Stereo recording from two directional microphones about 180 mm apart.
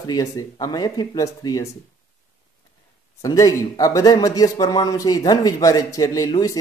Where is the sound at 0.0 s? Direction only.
20° left (ahead or behind).